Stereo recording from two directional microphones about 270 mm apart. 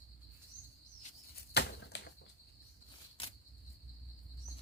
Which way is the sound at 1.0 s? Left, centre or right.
Left.